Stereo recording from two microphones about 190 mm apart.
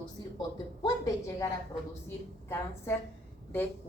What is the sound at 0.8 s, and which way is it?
A woman's voice, 15° left (ahead or behind).